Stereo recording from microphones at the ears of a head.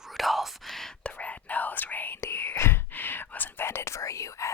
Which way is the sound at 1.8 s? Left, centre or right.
Left.